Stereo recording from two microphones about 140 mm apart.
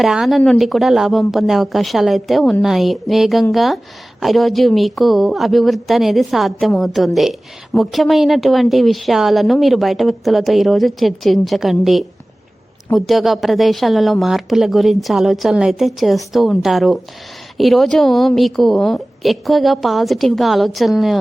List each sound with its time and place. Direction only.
0.0 s a woman's voice: 5° right (ahead or behind)